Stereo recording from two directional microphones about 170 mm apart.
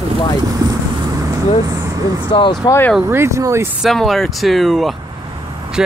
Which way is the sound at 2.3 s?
25° left (ahead or behind).